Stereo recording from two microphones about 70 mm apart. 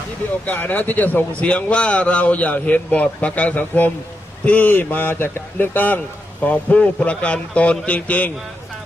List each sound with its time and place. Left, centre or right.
0.4 s a man's voice: left